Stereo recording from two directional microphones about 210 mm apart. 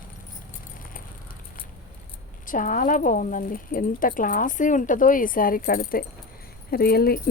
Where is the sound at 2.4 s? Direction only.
40° left (ahead or behind).